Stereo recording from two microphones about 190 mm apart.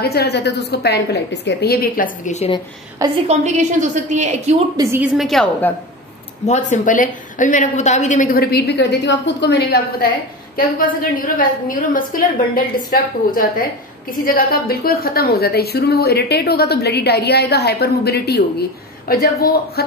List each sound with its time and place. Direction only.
0.0 s a woman's voice: 55° left (ahead or behind)
2.2 s a woman's voice: 35° left (ahead or behind)
3.3 s a woman's voice: 40° right (ahead or behind)
4.7 s speech: 10° right (ahead or behind)
5.1 s a woman's voice: centre (ahead or behind)
6.4 s a woman's voice: 40° left (ahead or behind); by 10.0 s 60° left (ahead or behind)
11.3 s a woman's voice: 45° left (ahead or behind)